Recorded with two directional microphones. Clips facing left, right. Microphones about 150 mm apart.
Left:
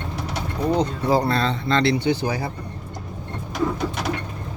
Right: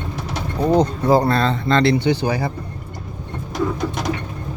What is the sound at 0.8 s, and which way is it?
Speech, 45° right (ahead or behind).